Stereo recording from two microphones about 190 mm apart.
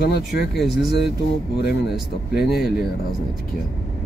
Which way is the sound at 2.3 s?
55° left (ahead or behind).